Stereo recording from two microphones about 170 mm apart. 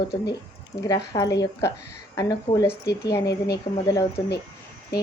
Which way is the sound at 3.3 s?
70° left (ahead or behind).